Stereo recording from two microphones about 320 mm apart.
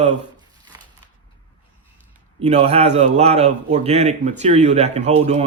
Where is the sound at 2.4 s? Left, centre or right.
Right.